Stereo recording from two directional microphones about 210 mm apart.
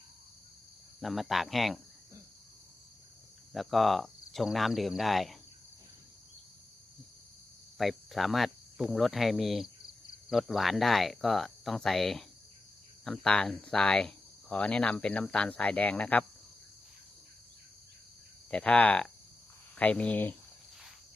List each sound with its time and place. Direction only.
1.0 s speech: centre (ahead or behind)
3.5 s speech: centre (ahead or behind)
7.8 s speech: centre (ahead or behind)
18.5 s speech: 5° left (ahead or behind)